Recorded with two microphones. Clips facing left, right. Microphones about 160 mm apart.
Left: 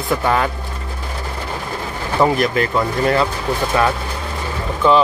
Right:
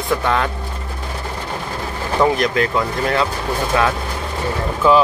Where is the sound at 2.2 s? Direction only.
5° left (ahead or behind).